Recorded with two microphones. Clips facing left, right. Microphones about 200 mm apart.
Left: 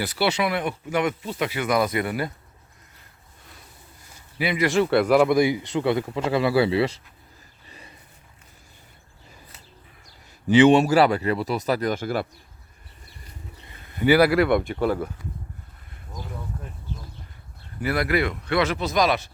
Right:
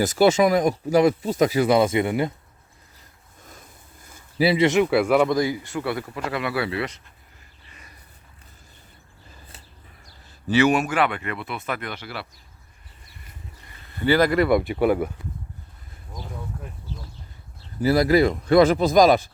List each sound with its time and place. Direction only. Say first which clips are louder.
0.0 s speech: right 7 dB; 45° right (ahead or behind); by 2.3 s 20° right (ahead or behind)
4.4 s speech: right 5 dB; 30° right (ahead or behind)
4.8 s speech: even; 5° right (ahead or behind)
5.1 s speech: left 2 dB; 10° left (ahead or behind); by 7.0 s 30° left (ahead or behind)
7.7 s a sound: left 4 dB; 30° left (ahead or behind)
10.5 s speech: left 5 dB; 25° left (ahead or behind); by 12.3 s 45° left (ahead or behind)
13.7 s speech: left 2 dB; 10° left (ahead or behind); by 15.1 s 10° right (ahead or behind)
17.7 s speech: right 6 dB; 35° right (ahead or behind)